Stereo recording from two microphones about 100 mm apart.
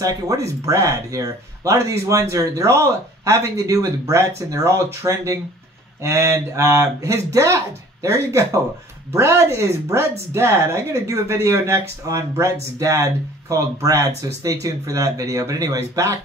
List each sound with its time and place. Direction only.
0.0 s speech: 35° right (ahead or behind)